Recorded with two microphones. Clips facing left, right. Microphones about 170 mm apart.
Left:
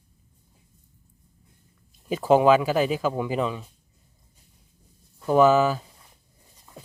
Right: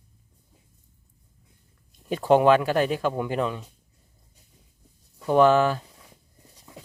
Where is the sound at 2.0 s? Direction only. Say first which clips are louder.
Even; 5° left (ahead or behind).